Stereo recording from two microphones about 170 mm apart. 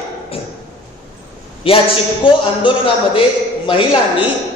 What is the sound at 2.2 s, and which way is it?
A man's voice, 30° left (ahead or behind).